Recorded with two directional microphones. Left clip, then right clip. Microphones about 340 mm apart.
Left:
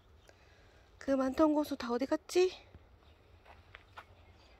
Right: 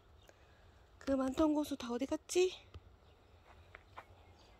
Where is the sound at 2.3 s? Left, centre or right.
Left.